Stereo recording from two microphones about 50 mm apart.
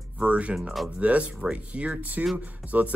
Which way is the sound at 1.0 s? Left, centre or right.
Right.